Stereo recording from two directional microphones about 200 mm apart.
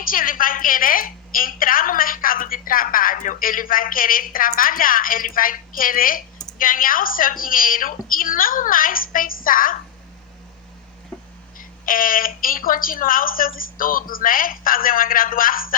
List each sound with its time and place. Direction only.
0.0 s a woman's voice: 45° left (ahead or behind)
11.5 s a woman's voice: 45° left (ahead or behind)